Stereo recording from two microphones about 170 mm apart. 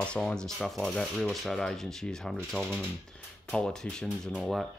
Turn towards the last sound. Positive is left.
turn(degrees=0)  # may be behind; listen again after turning